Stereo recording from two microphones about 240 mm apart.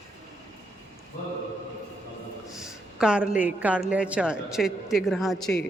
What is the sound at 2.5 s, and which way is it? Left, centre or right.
A woman's voice, centre.